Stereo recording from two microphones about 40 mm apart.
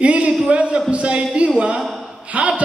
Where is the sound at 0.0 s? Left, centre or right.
Right.